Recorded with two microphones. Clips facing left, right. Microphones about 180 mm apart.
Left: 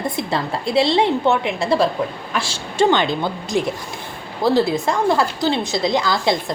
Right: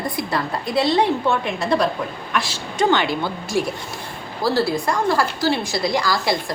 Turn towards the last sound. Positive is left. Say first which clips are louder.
# left 2 dB
turn(degrees=20)  # may be behind; listen again after turning